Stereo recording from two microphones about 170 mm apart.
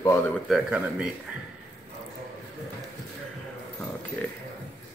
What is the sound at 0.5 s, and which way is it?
Speech, 5° right (ahead or behind).